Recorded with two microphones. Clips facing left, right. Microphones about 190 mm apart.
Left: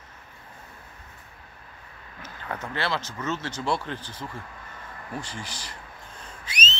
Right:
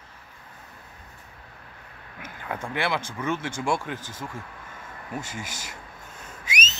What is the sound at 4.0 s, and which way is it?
Speech, 45° right (ahead or behind).